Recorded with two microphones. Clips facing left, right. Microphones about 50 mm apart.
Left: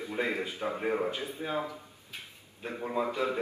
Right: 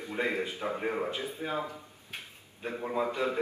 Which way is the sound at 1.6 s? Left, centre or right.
Right.